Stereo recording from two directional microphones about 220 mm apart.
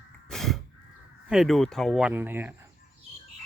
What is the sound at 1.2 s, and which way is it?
Speech, centre (ahead or behind).